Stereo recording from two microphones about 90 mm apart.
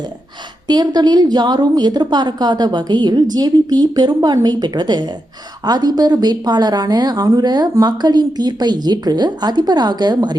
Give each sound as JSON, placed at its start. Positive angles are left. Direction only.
{"t": 0.7, "sound": "speech", "side_deg": -50}